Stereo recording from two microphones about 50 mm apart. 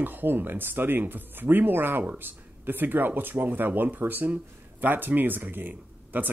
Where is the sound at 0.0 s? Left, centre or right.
Right.